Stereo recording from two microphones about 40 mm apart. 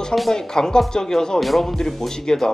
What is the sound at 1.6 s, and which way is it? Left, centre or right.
Speech, centre.